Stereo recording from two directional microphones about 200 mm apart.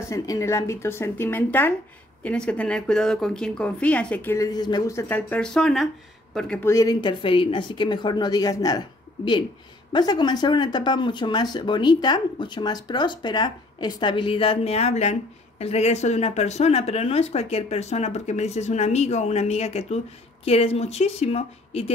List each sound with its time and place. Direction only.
0.1 s a woman's voice: 15° left (ahead or behind); by 21.9 s 30° left (ahead or behind)